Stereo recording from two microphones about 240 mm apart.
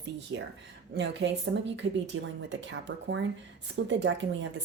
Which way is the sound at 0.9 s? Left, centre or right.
Right.